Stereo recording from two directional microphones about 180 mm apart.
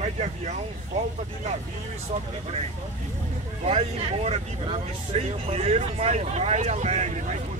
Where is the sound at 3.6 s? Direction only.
35° right (ahead or behind).